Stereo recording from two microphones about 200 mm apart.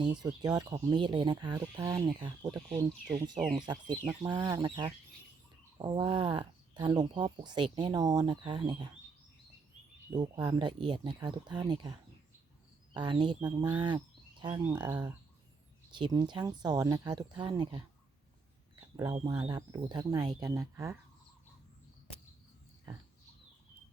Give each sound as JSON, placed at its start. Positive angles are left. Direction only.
{"t": 0.0, "sound": "speech", "side_deg": -20}
{"t": 10.1, "sound": "speech", "side_deg": -20}
{"t": 13.8, "sound": "a sound", "side_deg": -25}
{"t": 14.7, "sound": "speech", "side_deg": -10}
{"t": 19.1, "sound": "speech", "side_deg": -25}